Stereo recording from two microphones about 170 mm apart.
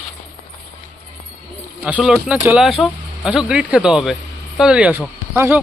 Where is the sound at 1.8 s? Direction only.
5° right (ahead or behind).